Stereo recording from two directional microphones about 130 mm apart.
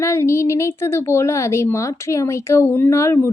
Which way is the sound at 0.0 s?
20° left (ahead or behind).